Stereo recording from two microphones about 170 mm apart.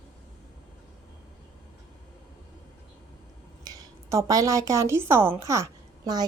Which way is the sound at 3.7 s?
20° right (ahead or behind).